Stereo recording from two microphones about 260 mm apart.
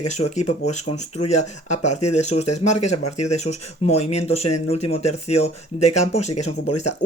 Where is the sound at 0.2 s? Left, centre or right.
Left.